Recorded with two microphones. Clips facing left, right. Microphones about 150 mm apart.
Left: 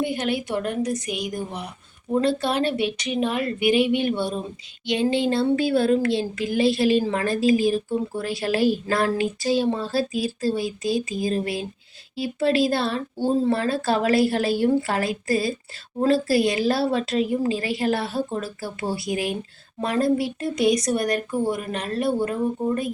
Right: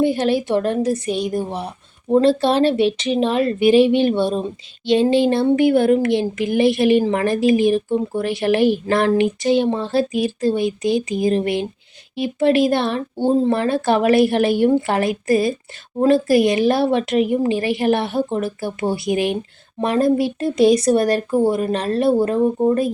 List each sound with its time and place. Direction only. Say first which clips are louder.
0.0 s a woman's voice: right 7 dB; 30° right (ahead or behind)